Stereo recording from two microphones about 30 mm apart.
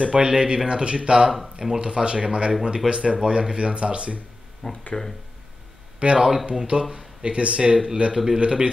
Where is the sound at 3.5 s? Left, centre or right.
Right.